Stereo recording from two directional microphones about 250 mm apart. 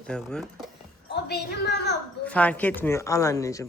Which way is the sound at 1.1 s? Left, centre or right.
Left.